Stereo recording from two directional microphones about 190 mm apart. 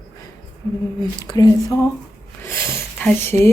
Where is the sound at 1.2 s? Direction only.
20° left (ahead or behind).